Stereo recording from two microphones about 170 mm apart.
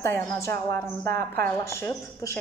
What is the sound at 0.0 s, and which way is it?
A woman's voice, 15° left (ahead or behind).